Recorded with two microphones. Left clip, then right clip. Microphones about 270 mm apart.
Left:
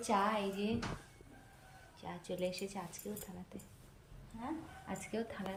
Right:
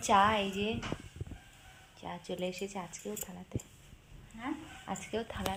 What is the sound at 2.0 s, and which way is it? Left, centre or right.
Speech, centre.